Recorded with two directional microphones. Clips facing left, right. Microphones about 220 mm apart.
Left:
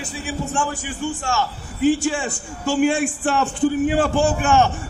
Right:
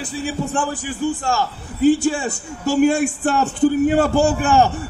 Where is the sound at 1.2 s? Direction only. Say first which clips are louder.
Right 2 dB; 40° right (ahead or behind).